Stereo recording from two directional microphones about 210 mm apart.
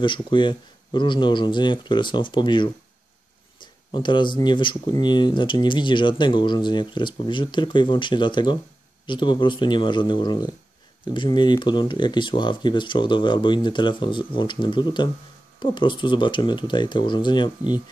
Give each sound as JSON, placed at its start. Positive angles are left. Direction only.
{"t": 0.0, "sound": "speech", "side_deg": 20}